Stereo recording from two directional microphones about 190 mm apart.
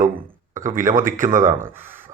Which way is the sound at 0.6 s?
45° right (ahead or behind).